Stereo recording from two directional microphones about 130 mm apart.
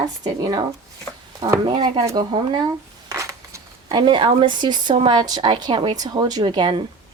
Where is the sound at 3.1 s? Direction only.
25° right (ahead or behind).